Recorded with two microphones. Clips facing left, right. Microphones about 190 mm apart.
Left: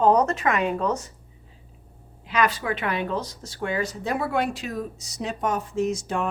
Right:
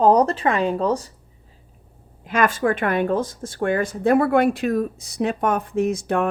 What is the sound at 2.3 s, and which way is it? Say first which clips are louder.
Speech: right 5 dB; 50° right (ahead or behind).